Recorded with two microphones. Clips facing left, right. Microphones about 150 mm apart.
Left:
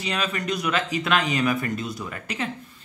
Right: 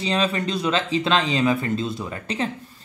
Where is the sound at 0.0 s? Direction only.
30° right (ahead or behind).